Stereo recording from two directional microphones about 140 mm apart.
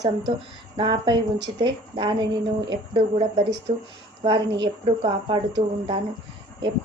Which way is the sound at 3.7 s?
45° right (ahead or behind).